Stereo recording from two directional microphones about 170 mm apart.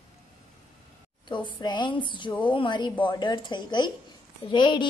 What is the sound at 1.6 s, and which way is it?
A woman's voice, 25° left (ahead or behind).